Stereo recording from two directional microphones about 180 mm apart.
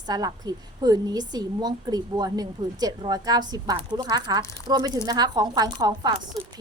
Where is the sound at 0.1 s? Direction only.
20° right (ahead or behind).